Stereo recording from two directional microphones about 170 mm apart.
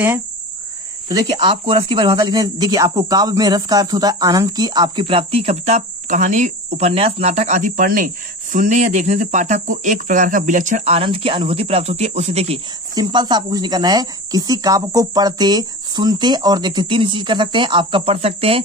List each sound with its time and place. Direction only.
1.0 s speech: 25° right (ahead or behind)
12.9 s speech: 25° right (ahead or behind)